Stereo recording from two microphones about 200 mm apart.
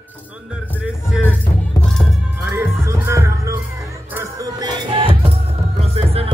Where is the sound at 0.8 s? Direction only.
5° right (ahead or behind).